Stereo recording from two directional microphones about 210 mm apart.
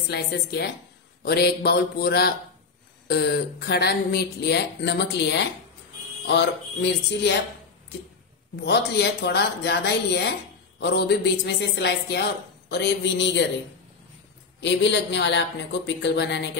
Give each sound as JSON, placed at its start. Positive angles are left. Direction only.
{"t": 0.1, "sound": "a woman's voice", "side_deg": 50}
{"t": 8.5, "sound": "a woman's voice", "side_deg": 50}
{"t": 14.6, "sound": "speech", "side_deg": 55}